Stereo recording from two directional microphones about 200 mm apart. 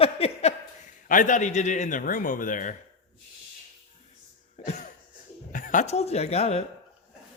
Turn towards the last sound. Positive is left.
turn(degrees=30)  # may be behind; listen again after turning